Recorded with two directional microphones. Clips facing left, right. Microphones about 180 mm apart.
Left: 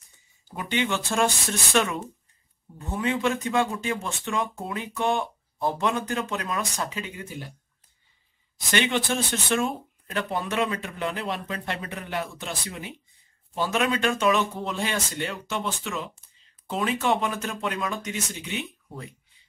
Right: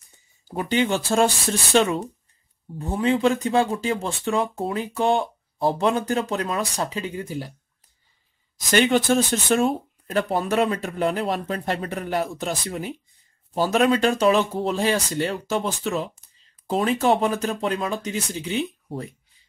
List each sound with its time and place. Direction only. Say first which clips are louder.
0.5 s speech: right 5 dB; 35° right (ahead or behind)
8.6 s speech: right 7 dB; 40° right (ahead or behind)